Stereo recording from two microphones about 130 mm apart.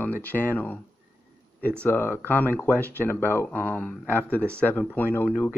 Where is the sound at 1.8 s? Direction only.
15° left (ahead or behind).